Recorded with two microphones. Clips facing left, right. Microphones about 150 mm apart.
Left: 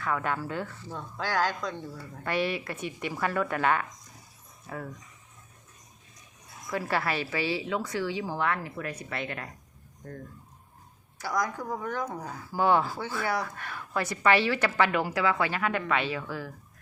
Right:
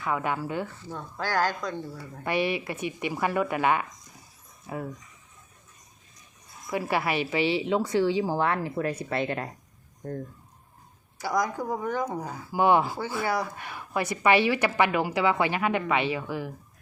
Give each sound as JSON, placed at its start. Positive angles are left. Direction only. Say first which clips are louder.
{"t": 0.0, "sound": "speech", "louder": "right 2 dB", "side_deg": -15}
{"t": 2.2, "sound": "speech", "louder": "right 2 dB", "side_deg": -15}
{"t": 6.7, "sound": "a woman's voice", "louder": "right 2 dB", "side_deg": -15}
{"t": 11.2, "sound": "a woman's voice", "louder": "right 3 dB", "side_deg": -10}